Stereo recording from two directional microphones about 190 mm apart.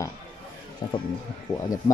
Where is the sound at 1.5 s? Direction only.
15° left (ahead or behind).